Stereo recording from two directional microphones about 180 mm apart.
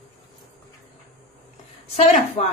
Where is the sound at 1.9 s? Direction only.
35° left (ahead or behind).